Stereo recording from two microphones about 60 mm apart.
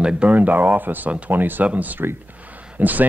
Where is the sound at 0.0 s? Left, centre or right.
Right.